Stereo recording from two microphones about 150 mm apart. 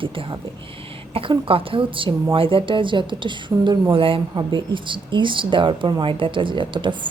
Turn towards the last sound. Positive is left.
turn(degrees=-30)  # may be behind; listen again after turning